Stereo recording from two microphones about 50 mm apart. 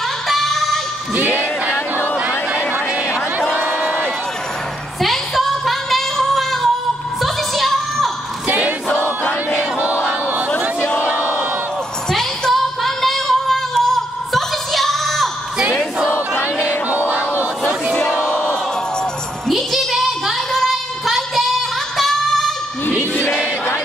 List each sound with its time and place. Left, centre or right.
0.3 s music: centre
1.1 s music: right
2.1 s a sound: right
3.5 s crowd: right
5.0 s a sound: centre
7.2 s music: centre
11.0 s battle cry: right
12.1 s music: centre
16.3 s music: left
16.9 s music: right
18.0 s crowd: centre
19.4 s a sound: centre